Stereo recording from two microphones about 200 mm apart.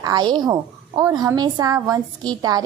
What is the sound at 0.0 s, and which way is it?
A woman's voice, 20° right (ahead or behind).